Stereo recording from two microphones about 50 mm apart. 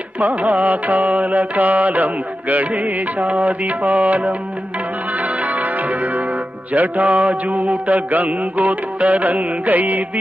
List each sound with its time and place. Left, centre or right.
0.2 s mantra: right
5.2 s music: right
6.7 s mantra: right